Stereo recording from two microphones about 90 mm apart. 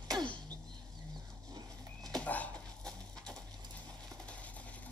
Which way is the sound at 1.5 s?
45° right (ahead or behind).